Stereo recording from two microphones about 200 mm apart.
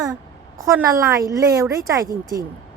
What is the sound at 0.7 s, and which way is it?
A woman's voice, 15° right (ahead or behind).